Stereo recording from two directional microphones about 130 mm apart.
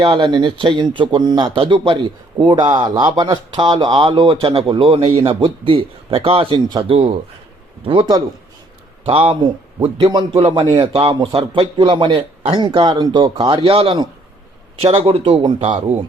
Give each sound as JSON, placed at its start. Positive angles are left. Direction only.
{"t": 0.0, "sound": "a man's voice", "side_deg": -35}
{"t": 9.0, "sound": "a man's voice", "side_deg": -50}
{"t": 10.1, "sound": "a man's voice", "side_deg": -35}